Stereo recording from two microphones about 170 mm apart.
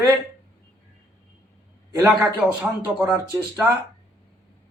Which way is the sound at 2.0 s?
5° right (ahead or behind).